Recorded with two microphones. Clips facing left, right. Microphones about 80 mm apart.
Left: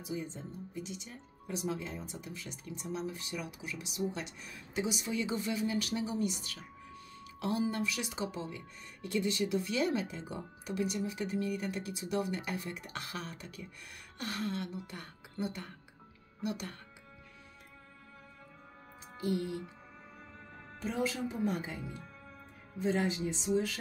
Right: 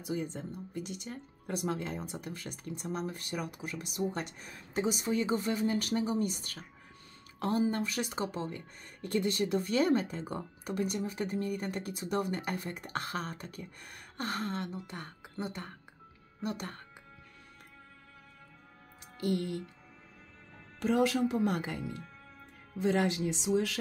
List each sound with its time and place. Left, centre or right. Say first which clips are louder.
0.0 s a woman's voice: right 4 dB; right
19.1 s a woman's voice: right 2 dB; right
20.8 s a woman's voice: right 7 dB; right